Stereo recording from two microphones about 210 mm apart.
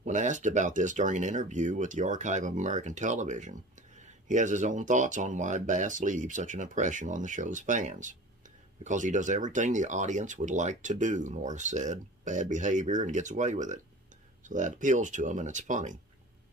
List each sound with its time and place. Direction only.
0.0 s speech: 35° right (ahead or behind)